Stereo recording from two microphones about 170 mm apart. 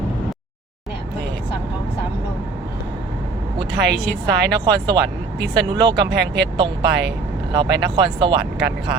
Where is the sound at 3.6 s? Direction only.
85° right.